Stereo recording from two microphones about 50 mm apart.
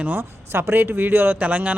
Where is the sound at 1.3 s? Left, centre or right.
Right.